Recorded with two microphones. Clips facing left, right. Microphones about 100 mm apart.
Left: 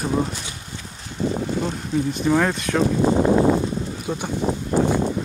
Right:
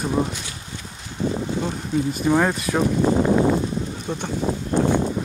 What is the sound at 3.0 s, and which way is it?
Speech, 20° left (ahead or behind).